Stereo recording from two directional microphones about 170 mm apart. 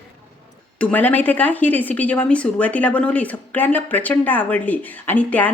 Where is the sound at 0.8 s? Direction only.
10° left (ahead or behind).